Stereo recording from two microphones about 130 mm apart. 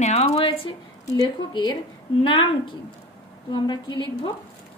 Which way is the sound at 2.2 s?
40° left (ahead or behind).